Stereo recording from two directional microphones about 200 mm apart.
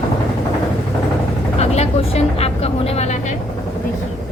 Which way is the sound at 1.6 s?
30° left (ahead or behind).